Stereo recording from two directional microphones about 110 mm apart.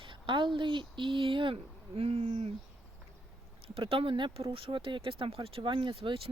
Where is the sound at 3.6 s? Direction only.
55° right (ahead or behind).